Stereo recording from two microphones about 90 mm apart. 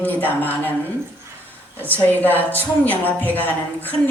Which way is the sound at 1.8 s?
20° left (ahead or behind).